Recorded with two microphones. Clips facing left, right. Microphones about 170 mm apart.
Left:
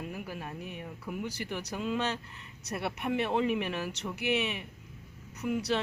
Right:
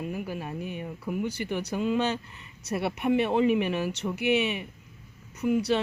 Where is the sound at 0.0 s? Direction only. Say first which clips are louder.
Right 6 dB; centre (ahead or behind).